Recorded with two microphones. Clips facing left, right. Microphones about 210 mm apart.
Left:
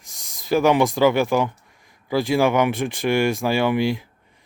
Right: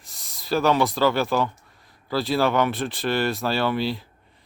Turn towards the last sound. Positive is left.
turn(degrees=15)  # may be behind; listen again after turning